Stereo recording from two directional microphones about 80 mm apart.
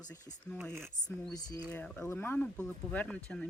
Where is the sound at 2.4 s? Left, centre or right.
Centre.